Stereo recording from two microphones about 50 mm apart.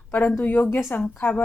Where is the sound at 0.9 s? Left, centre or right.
Left.